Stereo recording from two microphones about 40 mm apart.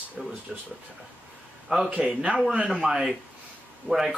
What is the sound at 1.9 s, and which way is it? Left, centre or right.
Speech, right.